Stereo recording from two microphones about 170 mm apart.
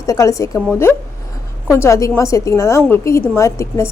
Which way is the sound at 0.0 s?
20° left (ahead or behind).